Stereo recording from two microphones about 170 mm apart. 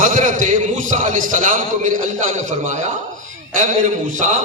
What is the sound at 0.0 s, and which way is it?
A man's voice, 50° right (ahead or behind).